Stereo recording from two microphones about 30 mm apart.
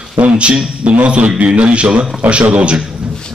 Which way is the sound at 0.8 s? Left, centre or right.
Right.